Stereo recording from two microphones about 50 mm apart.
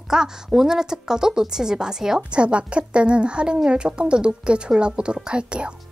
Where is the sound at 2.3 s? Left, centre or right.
Right.